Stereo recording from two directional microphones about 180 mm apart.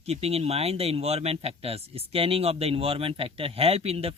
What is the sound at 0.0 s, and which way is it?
Speech, 35° right (ahead or behind).